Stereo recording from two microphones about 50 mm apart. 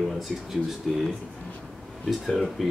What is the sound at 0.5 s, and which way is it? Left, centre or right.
Speech, centre.